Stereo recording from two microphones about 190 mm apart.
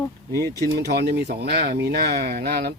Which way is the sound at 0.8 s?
60° right (ahead or behind).